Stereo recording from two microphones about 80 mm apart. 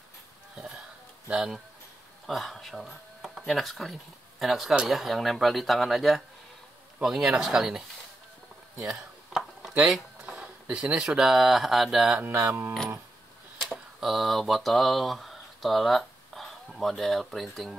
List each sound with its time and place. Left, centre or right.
1.3 s speech: centre
8.8 s dishes: centre
10.2 s speech: centre
12.2 s mantra: right
13.7 s speech: centre